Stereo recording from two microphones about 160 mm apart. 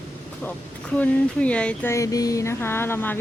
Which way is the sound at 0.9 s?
10° left (ahead or behind).